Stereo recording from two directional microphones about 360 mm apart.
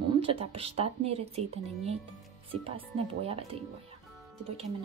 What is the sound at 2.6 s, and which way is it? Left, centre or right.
Speech, centre.